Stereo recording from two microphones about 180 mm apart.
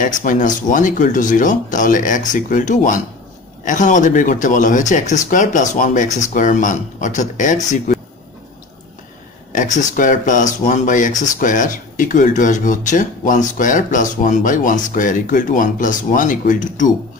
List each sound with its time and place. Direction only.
0.0 s speech: 45° left (ahead or behind)
9.5 s speech: 45° left (ahead or behind)